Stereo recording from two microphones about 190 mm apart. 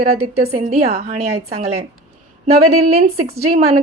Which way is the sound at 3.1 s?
30° right (ahead or behind).